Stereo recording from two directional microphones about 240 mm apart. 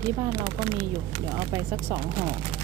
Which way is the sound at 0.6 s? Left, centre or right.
Right.